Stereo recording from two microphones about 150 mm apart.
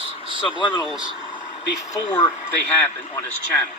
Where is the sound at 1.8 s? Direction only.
25° left (ahead or behind).